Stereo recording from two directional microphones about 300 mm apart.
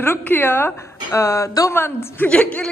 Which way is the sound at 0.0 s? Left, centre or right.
Centre.